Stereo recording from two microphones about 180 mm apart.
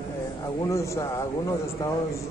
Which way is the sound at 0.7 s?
15° left (ahead or behind).